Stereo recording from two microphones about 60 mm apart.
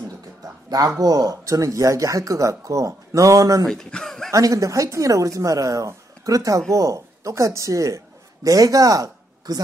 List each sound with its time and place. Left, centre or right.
0.7 s speech: right
3.6 s speech: centre
4.3 s speech: right
8.5 s speech: right